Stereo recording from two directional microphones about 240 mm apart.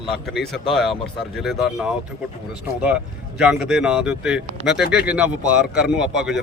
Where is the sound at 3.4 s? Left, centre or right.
Centre.